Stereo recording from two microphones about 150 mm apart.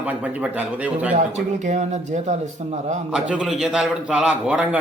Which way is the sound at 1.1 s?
50° right (ahead or behind).